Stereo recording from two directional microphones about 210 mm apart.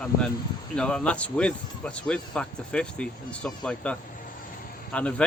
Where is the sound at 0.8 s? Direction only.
5° left (ahead or behind).